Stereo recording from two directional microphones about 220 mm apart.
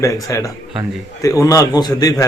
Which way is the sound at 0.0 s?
15° left (ahead or behind).